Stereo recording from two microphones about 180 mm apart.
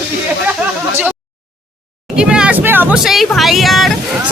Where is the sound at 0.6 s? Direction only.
10° right (ahead or behind).